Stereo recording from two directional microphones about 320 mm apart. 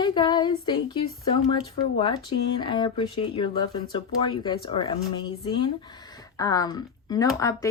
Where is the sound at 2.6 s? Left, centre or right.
Centre.